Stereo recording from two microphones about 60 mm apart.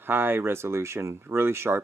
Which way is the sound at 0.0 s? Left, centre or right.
Right.